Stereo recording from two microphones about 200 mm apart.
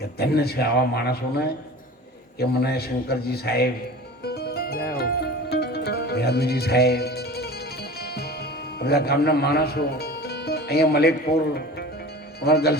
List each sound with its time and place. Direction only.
0.2 s a man's voice: 50° left (ahead or behind)
4.2 s music: 55° left (ahead or behind)
12.4 s a man's voice: 50° left (ahead or behind)